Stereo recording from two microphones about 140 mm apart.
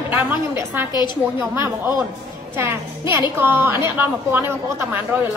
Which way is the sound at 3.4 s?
15° right (ahead or behind).